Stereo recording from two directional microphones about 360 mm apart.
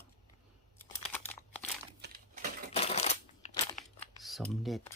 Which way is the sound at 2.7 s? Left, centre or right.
Centre.